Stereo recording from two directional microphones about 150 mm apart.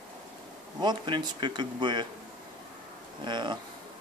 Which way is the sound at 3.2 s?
30° right (ahead or behind).